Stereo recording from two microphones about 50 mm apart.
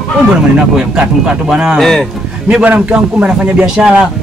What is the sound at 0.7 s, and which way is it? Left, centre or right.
Speech, centre.